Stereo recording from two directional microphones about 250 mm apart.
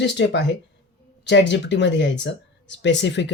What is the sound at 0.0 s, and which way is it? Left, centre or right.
Speech, left.